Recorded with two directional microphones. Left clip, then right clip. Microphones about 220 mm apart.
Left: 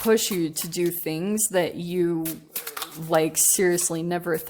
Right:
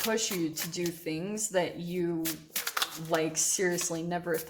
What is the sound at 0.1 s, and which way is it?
Speech, 50° left (ahead or behind).